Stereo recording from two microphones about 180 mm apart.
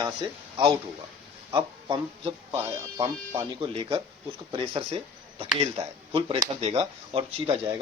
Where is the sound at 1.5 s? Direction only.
25° right (ahead or behind).